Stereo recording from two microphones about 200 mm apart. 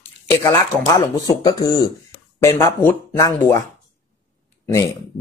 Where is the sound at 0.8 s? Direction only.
15° left (ahead or behind).